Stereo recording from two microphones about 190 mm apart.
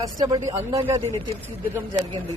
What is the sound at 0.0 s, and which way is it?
Speech, 20° right (ahead or behind).